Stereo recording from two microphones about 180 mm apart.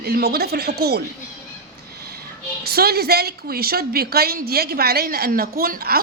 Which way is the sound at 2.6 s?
60° right (ahead or behind).